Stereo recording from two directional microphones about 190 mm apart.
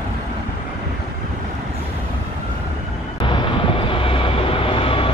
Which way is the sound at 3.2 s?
25° left (ahead or behind).